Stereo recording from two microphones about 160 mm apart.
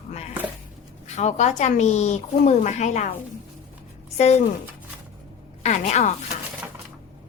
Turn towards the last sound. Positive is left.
turn(degrees=45)  # may be behind; listen again after turning